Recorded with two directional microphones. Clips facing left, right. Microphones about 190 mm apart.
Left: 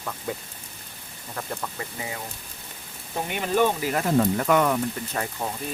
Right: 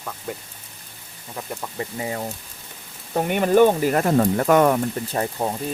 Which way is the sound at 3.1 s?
55° right (ahead or behind).